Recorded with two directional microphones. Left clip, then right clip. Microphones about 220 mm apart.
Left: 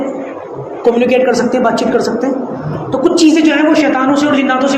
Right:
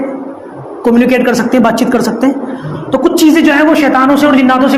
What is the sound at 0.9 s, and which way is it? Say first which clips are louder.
Speech: right 2 dB; 50° right (ahead or behind).